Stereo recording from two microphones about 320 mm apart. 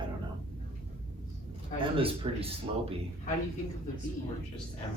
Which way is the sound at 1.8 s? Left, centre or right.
Centre.